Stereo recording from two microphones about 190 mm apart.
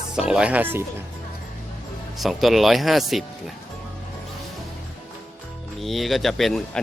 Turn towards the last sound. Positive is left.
turn(degrees=0)  # may be behind; listen again after turning